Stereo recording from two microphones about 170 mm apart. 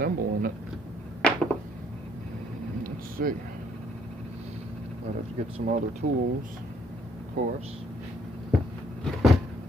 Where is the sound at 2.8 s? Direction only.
60° right (ahead or behind).